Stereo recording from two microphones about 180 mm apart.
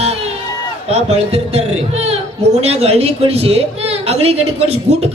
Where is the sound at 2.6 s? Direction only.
35° right (ahead or behind).